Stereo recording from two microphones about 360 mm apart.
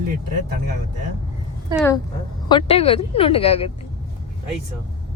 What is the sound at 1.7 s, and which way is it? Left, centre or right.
Speech, centre.